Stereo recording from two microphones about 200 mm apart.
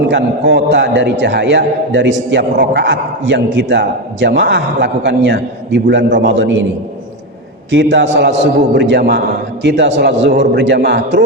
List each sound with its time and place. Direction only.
0.1 s a man's voice: 60° right (ahead or behind)
7.7 s a man's voice: 65° right (ahead or behind)